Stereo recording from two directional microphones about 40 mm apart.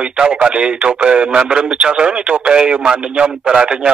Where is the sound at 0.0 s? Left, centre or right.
Right.